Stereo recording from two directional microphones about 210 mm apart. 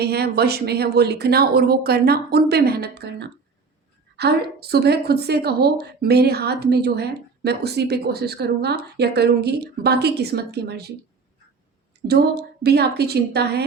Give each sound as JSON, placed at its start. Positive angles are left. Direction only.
{"t": 0.0, "sound": "a woman's voice", "side_deg": -50}
{"t": 12.0, "sound": "a woman's voice", "side_deg": -50}